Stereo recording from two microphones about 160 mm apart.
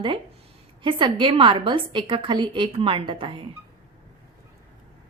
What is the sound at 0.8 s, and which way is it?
A woman's voice, 30° right (ahead or behind).